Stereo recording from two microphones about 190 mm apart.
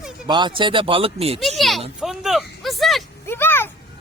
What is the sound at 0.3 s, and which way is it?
Speech, 25° right (ahead or behind).